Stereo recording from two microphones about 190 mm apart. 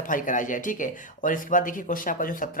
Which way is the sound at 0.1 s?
45° left (ahead or behind).